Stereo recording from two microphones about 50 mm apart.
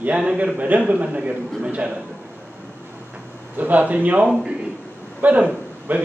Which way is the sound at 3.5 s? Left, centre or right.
Right.